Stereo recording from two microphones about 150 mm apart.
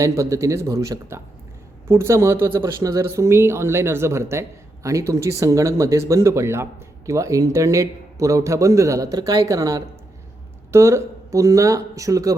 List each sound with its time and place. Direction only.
0.2 s speech: 20° right (ahead or behind)